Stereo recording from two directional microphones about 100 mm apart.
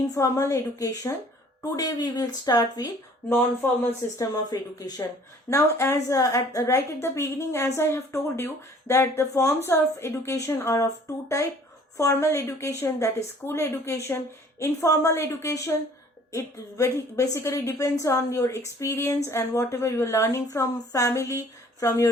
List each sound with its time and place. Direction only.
0.1 s speech: 30° left (ahead or behind)
3.2 s a woman's voice: 20° left (ahead or behind)
4.5 s a woman's voice: 40° left (ahead or behind)
11.9 s a woman's voice: 30° left (ahead or behind)